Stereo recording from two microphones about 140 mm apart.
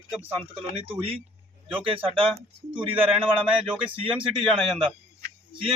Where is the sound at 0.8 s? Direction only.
40° right (ahead or behind).